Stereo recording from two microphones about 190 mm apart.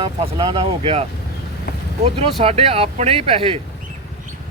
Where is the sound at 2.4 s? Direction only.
30° right (ahead or behind).